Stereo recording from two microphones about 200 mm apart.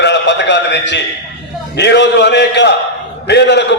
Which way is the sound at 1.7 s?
60° left (ahead or behind).